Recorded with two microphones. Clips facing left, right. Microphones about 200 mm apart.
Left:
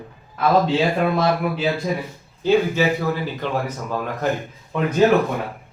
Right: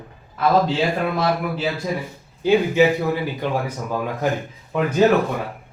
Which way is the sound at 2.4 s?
15° right (ahead or behind).